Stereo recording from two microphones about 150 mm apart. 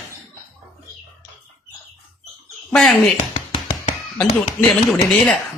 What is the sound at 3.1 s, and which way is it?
Music, 40° left (ahead or behind).